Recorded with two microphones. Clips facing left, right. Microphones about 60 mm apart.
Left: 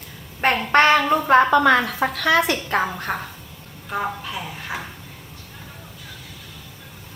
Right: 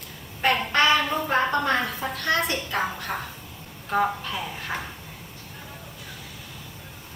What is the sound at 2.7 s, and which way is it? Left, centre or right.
Speech, left.